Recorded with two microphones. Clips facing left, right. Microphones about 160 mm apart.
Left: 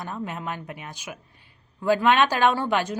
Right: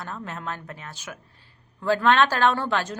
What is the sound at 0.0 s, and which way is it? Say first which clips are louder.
A woman's voice: left 2 dB; 15° left (ahead or behind).